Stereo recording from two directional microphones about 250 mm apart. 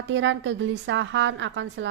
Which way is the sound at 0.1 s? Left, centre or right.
Right.